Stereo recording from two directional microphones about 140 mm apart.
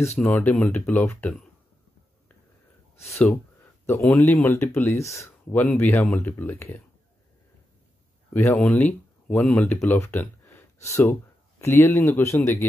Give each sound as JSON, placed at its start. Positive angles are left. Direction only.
{"t": 0.2, "sound": "speech", "side_deg": 10}
{"t": 3.8, "sound": "speech", "side_deg": 15}
{"t": 8.3, "sound": "speech", "side_deg": 15}